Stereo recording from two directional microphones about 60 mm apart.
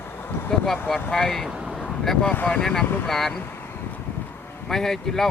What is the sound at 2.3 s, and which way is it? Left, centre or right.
Speech, left.